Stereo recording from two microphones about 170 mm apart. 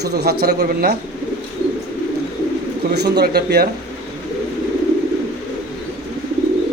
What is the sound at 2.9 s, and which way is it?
Speech, 75° right (ahead or behind).